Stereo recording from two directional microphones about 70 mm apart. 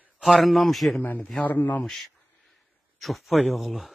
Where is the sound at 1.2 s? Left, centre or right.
Centre.